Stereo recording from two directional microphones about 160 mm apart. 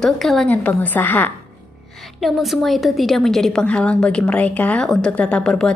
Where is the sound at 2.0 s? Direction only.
Centre (ahead or behind).